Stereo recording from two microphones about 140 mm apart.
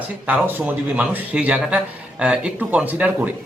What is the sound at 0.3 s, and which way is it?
Speech, 10° right (ahead or behind).